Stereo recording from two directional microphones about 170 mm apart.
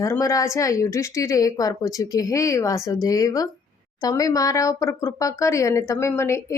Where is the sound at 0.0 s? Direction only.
20° left (ahead or behind).